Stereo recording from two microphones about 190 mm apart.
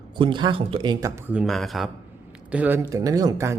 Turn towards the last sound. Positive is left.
turn(degrees=-15)  # may be behind; listen again after turning